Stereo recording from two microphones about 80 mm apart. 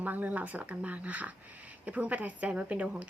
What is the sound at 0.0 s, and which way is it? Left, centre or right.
A woman's voice, centre.